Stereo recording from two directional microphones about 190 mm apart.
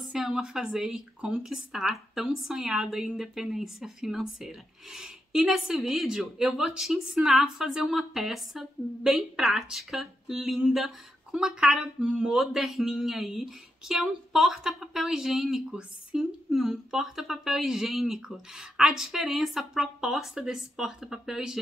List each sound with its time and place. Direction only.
0.1 s speech: 5° right (ahead or behind)